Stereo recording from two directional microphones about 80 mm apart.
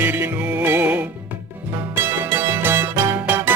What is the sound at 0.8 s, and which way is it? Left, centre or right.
Music, centre.